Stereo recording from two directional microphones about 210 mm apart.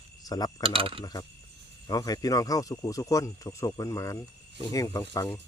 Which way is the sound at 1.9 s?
15° left (ahead or behind).